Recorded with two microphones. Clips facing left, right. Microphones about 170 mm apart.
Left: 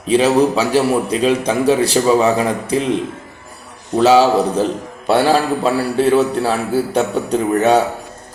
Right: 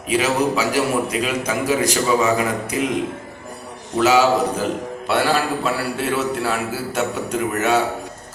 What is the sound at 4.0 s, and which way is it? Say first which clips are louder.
A man's voice: left 4 dB; 30° left (ahead or behind).